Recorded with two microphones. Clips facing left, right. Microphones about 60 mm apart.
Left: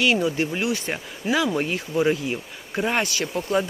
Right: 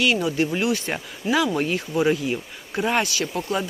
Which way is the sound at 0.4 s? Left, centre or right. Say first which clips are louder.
Right 2 dB; left.